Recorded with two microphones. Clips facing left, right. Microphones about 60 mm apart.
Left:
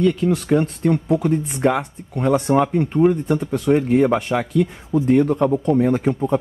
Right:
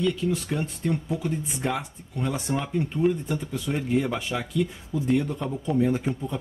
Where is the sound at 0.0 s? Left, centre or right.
Left.